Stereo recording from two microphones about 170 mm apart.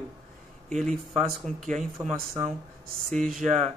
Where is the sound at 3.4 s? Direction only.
45° right (ahead or behind).